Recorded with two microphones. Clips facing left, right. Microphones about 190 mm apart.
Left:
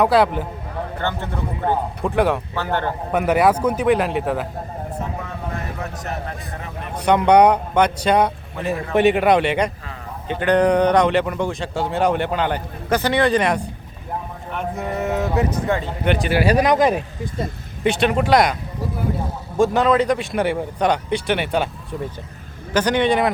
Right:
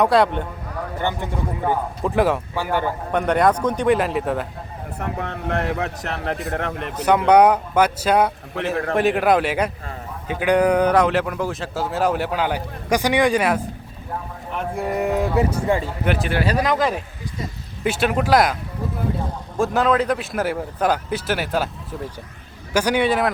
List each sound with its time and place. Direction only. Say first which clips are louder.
0.0 s speech: left 1 dB; centre (ahead or behind)
0.9 s speech: right 2 dB; 15° right (ahead or behind)
2.0 s speech: even; centre (ahead or behind)
3.1 s speech: left 2 dB; 5° left (ahead or behind)
4.9 s speech: right 5 dB; 70° right (ahead or behind)
7.0 s speech: left 1 dB; 5° right (ahead or behind)
14.8 s speech: right 2 dB; 15° right (ahead or behind)
16.4 s speech: left 6 dB; 15° left (ahead or behind)
17.8 s speech: left 2 dB; 5° right (ahead or behind)
19.5 s speech: left 3 dB; centre (ahead or behind)
22.7 s speech: left 1 dB; 10° right (ahead or behind)